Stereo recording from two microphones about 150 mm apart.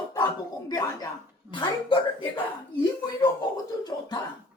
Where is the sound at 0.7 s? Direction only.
25° left (ahead or behind).